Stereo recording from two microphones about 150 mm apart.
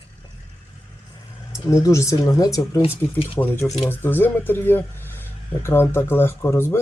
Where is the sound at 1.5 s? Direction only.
20° left (ahead or behind).